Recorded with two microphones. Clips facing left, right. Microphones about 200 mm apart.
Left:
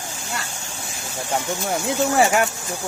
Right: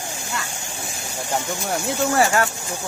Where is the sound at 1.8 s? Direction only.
20° left (ahead or behind).